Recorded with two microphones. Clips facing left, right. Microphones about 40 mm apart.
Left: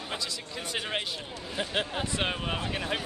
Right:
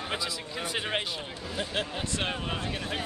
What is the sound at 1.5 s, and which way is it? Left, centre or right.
Speech, centre.